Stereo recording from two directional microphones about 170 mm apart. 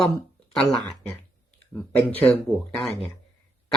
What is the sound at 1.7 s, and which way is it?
Speech, 10° left (ahead or behind).